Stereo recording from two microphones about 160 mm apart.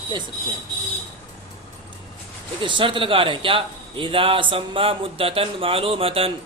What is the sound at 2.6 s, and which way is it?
A man's voice, 30° right (ahead or behind).